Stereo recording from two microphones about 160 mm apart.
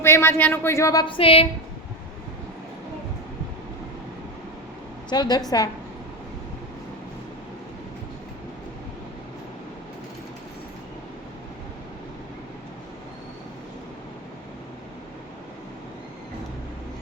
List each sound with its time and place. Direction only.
0.0 s speech: 15° left (ahead or behind)
1.0 s a sound: 35° left (ahead or behind)
5.1 s a woman's voice: 25° left (ahead or behind)